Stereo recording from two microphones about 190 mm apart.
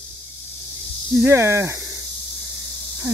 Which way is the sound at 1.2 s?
15° right (ahead or behind).